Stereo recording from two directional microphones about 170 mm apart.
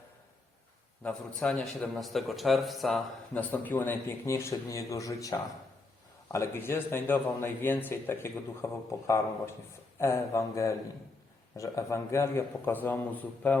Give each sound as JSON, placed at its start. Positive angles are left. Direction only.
{"t": 1.0, "sound": "a man's voice", "side_deg": 5}
{"t": 3.5, "sound": "a man's voice", "side_deg": 10}